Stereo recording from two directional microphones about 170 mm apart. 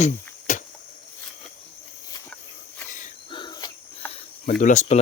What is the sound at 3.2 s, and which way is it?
Cricket, 25° left (ahead or behind).